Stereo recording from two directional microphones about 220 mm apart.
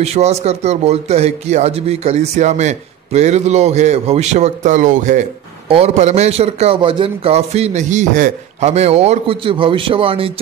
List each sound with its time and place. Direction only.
0.0 s a man's voice: 30° right (ahead or behind)